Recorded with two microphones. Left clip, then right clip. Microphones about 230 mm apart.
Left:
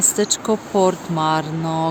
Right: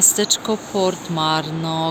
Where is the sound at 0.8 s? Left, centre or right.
Centre.